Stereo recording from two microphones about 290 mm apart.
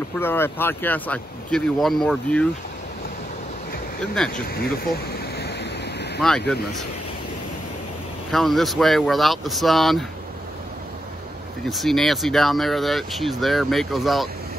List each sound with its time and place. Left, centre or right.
0.2 s speech: centre
4.0 s speech: centre
4.6 s speech: left
5.3 s waves: left
6.2 s speech: centre
8.3 s speech: centre
11.7 s speech: centre